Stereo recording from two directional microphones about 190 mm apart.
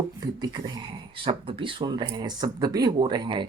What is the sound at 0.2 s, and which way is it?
Speech, 20° right (ahead or behind).